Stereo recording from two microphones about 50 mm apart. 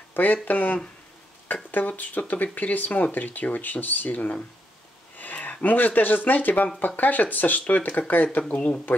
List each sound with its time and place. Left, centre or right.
0.1 s speech: left
8.5 s speech: left